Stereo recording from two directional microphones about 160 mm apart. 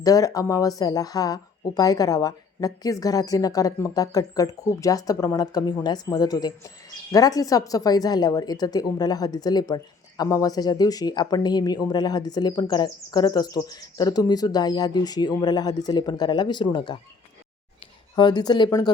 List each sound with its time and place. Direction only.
0.0 s a woman's voice: 20° left (ahead or behind)
18.2 s a woman's voice: 25° left (ahead or behind)